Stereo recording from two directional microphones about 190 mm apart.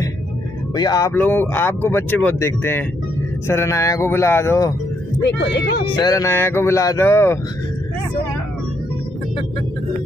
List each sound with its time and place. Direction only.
0.7 s speech: 20° left (ahead or behind)
1.1 s speech: 10° left (ahead or behind)
5.2 s speech: 70° left (ahead or behind)
5.9 s speech: 20° left (ahead or behind)